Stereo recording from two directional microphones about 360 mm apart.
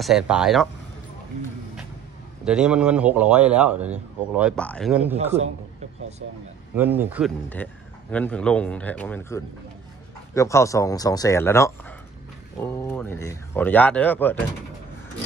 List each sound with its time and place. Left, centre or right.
0.0 s speech: centre
2.4 s speech: centre
5.1 s a man's voice: centre
6.8 s speech: centre